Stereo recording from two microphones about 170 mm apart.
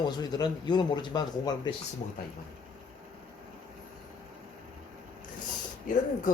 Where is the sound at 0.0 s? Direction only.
25° left (ahead or behind).